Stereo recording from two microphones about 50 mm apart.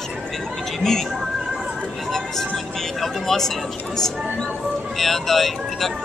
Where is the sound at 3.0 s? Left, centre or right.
Centre.